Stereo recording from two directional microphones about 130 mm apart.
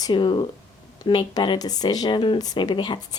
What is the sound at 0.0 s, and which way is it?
Speech, 35° left (ahead or behind).